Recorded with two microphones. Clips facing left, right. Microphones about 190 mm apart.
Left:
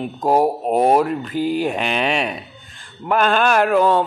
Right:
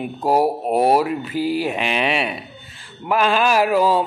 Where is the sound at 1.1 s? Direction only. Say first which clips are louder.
Left 1 dB; 5° right (ahead or behind).